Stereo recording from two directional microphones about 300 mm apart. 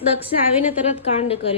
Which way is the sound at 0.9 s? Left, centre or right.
Left.